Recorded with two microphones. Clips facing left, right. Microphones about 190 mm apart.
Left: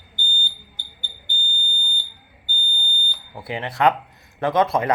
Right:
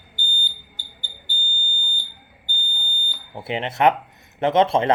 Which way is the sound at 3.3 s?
25° right (ahead or behind).